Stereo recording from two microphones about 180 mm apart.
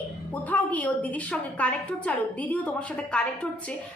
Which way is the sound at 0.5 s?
10° left (ahead or behind).